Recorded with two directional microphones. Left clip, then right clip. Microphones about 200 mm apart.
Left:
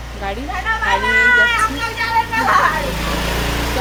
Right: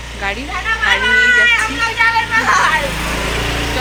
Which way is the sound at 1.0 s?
25° left (ahead or behind).